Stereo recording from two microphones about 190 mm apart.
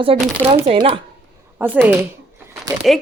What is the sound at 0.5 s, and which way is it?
Speech, 30° right (ahead or behind).